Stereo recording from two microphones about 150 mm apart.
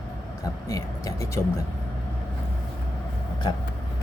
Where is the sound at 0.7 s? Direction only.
20° left (ahead or behind).